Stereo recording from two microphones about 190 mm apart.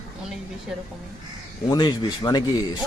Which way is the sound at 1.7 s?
20° left (ahead or behind).